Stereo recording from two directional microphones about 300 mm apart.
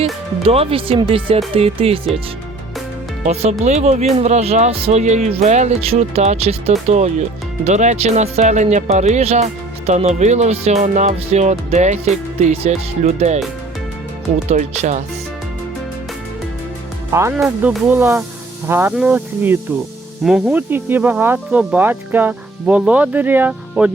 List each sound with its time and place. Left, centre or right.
0.0 s speech: centre
3.6 s speech: right
14.5 s speech: right
17.1 s speech: centre